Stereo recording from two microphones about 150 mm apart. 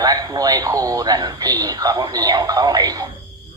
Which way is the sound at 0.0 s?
25° right (ahead or behind).